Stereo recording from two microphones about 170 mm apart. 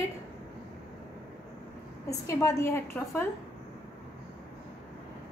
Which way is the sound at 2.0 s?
20° left (ahead or behind).